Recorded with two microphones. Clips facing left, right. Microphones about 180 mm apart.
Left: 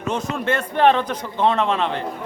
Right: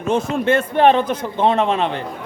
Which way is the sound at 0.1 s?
25° right (ahead or behind).